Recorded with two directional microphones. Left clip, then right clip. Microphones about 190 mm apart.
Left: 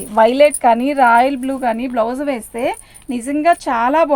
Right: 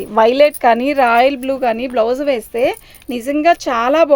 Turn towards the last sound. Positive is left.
turn(degrees=-60)  # may be behind; listen again after turning